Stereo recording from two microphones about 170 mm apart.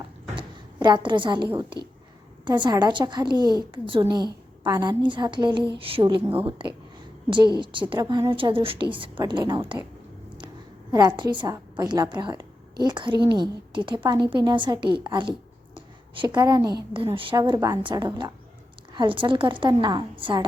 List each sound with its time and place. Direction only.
0.3 s a sound: 25° right (ahead or behind)
2.4 s a woman's voice: 25° right (ahead or behind)
10.9 s a woman's voice: 25° right (ahead or behind)